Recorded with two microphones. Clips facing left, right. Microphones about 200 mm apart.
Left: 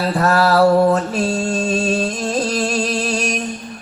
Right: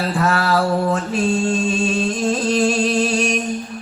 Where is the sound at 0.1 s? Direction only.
40° left (ahead or behind).